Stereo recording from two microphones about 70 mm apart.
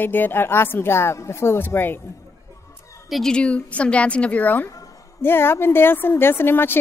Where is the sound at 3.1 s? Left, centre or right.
Centre.